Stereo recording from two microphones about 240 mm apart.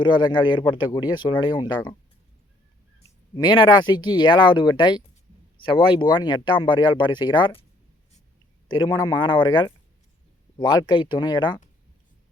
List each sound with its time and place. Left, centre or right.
0.0 s speech: centre
3.3 s speech: centre
8.6 s speech: centre